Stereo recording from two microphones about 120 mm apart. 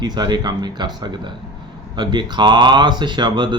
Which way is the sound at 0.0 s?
35° right (ahead or behind).